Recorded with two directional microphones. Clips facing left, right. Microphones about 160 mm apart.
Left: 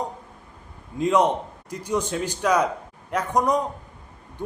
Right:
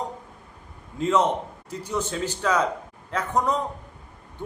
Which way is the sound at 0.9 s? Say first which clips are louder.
Left 2 dB; 15° left (ahead or behind).